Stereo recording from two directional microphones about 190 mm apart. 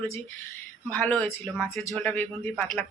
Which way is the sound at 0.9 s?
5° left (ahead or behind).